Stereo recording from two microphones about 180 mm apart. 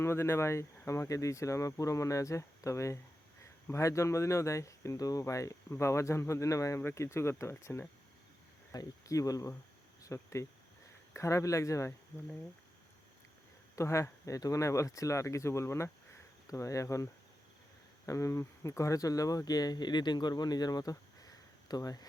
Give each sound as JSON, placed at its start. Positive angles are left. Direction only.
{"t": 0.0, "sound": "speech", "side_deg": 15}
{"t": 13.7, "sound": "speech", "side_deg": 15}